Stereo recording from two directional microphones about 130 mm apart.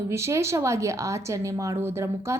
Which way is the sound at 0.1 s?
20° right (ahead or behind).